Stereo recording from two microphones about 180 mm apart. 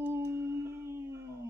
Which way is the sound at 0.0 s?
15° right (ahead or behind).